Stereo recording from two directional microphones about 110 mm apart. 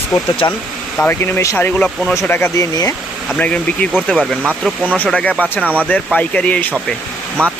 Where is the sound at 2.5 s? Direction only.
35° left (ahead or behind).